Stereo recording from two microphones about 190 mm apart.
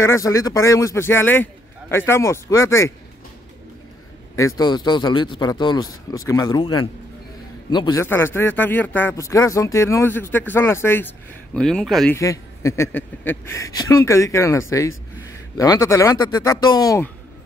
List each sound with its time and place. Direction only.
0.0 s speech: 15° left (ahead or behind)
4.6 s speech: 20° left (ahead or behind); by 12.2 s centre (ahead or behind)
12.2 s speech: 15° left (ahead or behind)